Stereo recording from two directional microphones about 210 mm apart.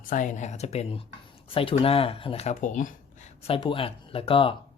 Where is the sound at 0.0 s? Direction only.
40° left (ahead or behind).